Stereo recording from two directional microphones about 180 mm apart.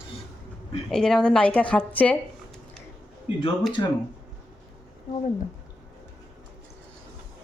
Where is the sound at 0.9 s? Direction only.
5° left (ahead or behind).